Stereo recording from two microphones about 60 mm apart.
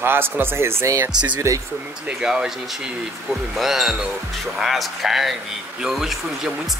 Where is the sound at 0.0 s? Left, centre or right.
Right.